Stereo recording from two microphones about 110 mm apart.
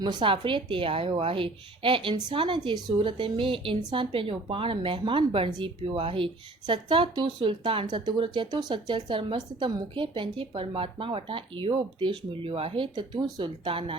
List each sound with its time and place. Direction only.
0.0 s a woman's voice: 45° right (ahead or behind)